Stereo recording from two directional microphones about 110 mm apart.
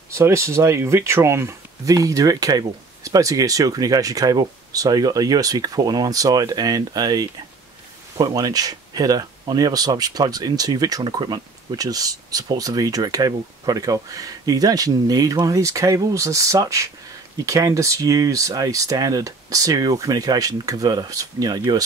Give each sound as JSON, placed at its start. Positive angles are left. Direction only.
{"t": 0.1, "sound": "speech", "side_deg": -25}